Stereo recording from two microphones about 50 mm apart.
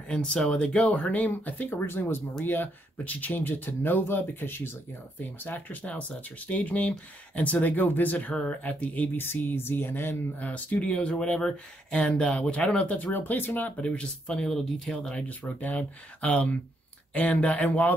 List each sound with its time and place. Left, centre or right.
0.1 s speech: centre; by 1.8 s left
1.9 s speech: left
2.4 s speech: left
5.4 s speech: left
9.1 s speech: left
10.4 s speech: left
12.3 s speech: left
13.1 s speech: left
13.7 s speech: left; by 15.1 s centre
15.1 s speech: left